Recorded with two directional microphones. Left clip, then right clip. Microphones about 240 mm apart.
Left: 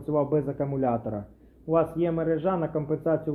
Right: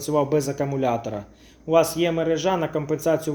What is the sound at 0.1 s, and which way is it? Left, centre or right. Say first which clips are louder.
A man's voice: right 4 dB; right.